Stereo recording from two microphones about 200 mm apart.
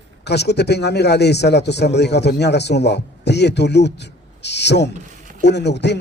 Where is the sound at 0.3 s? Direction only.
55° left (ahead or behind).